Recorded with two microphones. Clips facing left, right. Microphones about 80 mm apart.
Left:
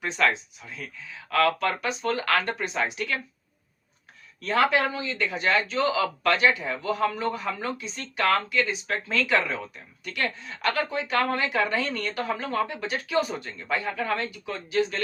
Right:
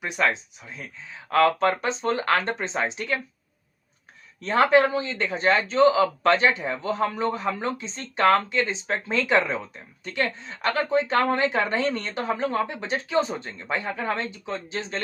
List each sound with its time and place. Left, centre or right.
0.0 s speech: centre
4.4 s speech: right